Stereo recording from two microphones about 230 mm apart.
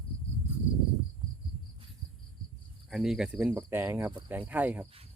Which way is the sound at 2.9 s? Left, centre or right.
Centre.